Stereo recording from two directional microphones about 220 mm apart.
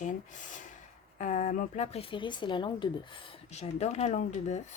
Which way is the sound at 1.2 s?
35° left (ahead or behind).